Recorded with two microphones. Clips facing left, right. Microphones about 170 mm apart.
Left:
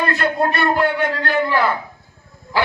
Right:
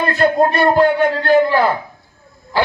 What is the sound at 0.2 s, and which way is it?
Speech, 35° right (ahead or behind).